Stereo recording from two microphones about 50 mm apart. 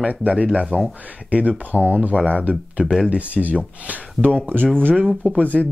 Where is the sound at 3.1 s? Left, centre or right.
Right.